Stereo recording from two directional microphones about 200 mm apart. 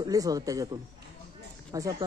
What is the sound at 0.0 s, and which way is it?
Speech, 15° right (ahead or behind).